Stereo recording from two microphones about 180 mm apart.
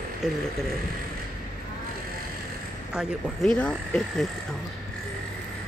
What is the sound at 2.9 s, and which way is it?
Speech, 5° right (ahead or behind).